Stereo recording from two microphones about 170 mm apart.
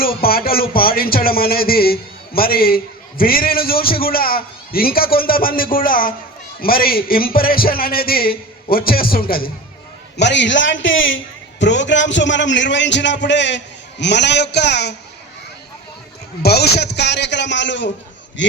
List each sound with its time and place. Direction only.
0.0 s speech: 60° left (ahead or behind)
10.2 s a man's voice: 90° left
16.4 s a man's voice: 70° left (ahead or behind); by 18.5 s 90° left